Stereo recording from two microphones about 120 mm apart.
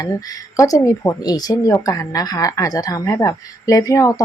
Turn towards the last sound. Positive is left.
turn(degrees=25)  # may be behind; listen again after turning